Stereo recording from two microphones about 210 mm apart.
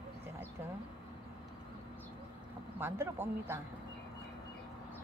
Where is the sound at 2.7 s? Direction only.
10° right (ahead or behind).